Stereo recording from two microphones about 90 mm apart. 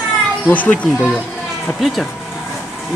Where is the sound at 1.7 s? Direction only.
Centre (ahead or behind).